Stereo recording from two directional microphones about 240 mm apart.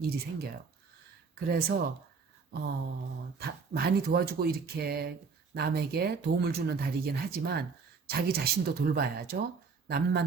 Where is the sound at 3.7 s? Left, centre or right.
Right.